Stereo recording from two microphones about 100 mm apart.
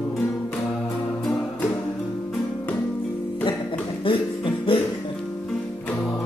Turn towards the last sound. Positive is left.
turn(degrees=65)  # may be behind; listen again after turning